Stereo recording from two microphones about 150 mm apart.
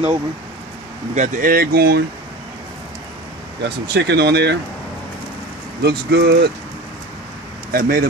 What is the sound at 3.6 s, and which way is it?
Speech, 90° right.